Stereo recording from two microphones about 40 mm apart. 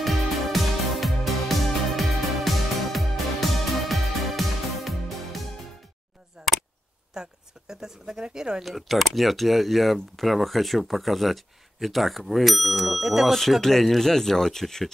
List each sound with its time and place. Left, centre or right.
0.0 s music: centre
6.4 s a sound: centre
7.2 s speech: centre
8.6 s speech: centre
13.3 s speech: centre